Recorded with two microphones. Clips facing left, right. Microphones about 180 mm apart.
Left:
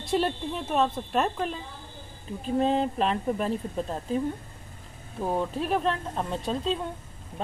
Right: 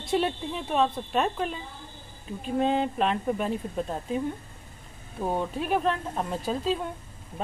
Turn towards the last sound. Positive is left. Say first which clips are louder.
# right 1 dB
turn(degrees=-5)  # may be behind; listen again after turning